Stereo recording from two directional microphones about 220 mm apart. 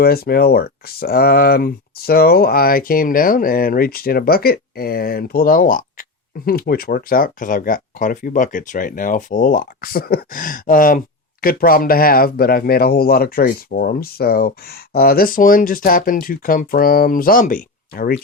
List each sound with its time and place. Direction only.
0.0 s speech: 45° left (ahead or behind)